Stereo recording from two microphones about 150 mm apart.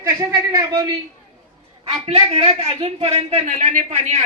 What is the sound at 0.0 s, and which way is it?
Speech, 20° right (ahead or behind).